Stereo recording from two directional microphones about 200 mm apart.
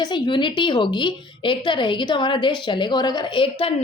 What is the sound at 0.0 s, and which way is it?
A woman's voice, 25° left (ahead or behind).